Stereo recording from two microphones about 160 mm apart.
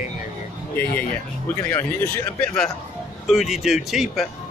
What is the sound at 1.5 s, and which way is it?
Speech, 15° left (ahead or behind).